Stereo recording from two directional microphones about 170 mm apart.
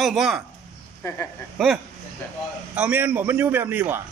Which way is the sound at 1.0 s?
20° left (ahead or behind).